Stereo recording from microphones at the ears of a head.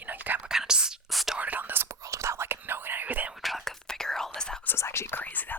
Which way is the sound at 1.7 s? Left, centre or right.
Right.